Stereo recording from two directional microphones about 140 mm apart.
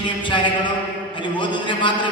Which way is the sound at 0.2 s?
35° left (ahead or behind).